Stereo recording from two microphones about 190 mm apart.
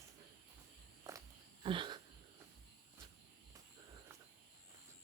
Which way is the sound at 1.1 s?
20° right (ahead or behind).